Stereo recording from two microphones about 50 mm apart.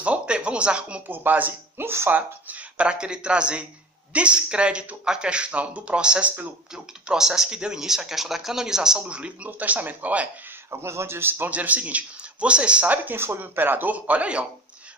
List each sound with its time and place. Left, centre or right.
0.0 s a sound: right
1.0 s speech: right
2.9 s speech: centre
9.5 s speech: right
10.7 s a man's voice: right
11.5 s speech: right
13.1 s speech: right